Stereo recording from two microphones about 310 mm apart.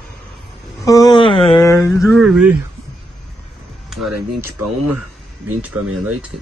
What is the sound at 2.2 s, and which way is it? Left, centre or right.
Speech, centre.